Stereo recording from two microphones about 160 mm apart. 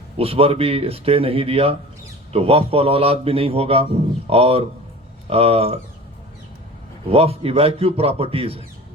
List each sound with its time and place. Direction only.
0.2 s a man's voice: 35° right (ahead or behind)
7.1 s a man's voice: 40° right (ahead or behind)